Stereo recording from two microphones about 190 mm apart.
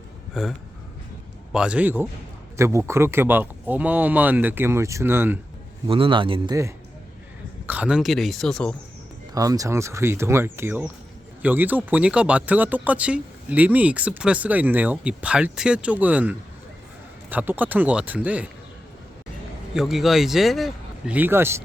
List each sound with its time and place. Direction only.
0.4 s speech: 5° right (ahead or behind)
1.5 s speech: 5° right (ahead or behind)
5.9 s a man's voice: 25° right (ahead or behind)
7.7 s speech: 5° right (ahead or behind)
9.3 s speech: 20° right (ahead or behind)
19.7 s speech: centre (ahead or behind)